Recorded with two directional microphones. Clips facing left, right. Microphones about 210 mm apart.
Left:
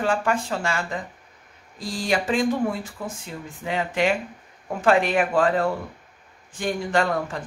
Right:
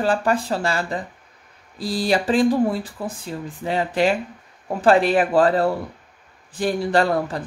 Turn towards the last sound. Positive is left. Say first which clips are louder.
# right 4 dB
turn(degrees=-35)  # may be behind; listen again after turning